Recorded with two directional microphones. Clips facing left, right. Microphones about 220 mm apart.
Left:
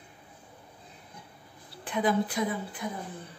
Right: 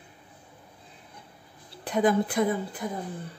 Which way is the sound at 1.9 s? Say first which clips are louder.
Right 4 dB; 45° right (ahead or behind).